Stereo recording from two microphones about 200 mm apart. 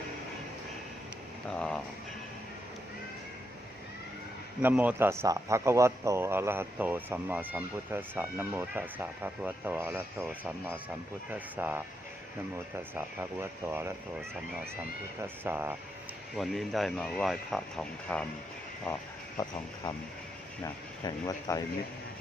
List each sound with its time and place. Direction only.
1.5 s speech: 5° left (ahead or behind)
4.6 s a man's voice: 5° right (ahead or behind)
13.4 s a man's voice: 10° right (ahead or behind)
15.2 s a man's voice: 10° right (ahead or behind)
16.3 s speech: centre (ahead or behind)
19.4 s speech: 20° left (ahead or behind)
21.0 s speech: 15° left (ahead or behind)